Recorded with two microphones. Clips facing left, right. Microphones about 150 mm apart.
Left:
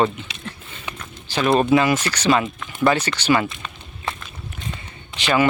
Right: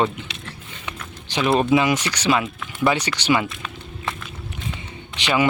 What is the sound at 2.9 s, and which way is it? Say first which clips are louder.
Speech: left 1 dB; 15° right (ahead or behind).